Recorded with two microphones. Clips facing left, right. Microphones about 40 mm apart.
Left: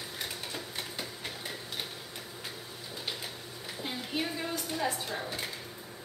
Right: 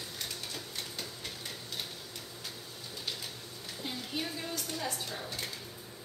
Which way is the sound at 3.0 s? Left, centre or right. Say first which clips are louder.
Left 2 dB; centre.